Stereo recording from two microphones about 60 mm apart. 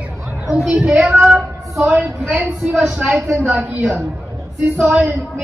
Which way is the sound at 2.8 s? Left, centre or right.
Centre.